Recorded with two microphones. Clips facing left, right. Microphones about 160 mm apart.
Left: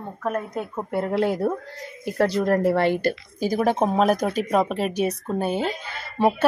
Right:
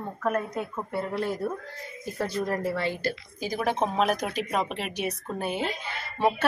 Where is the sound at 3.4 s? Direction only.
40° left (ahead or behind).